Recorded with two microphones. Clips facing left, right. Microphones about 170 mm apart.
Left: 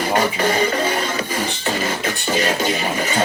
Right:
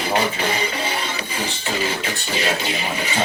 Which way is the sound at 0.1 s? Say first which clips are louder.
Left 2 dB; 50° left (ahead or behind).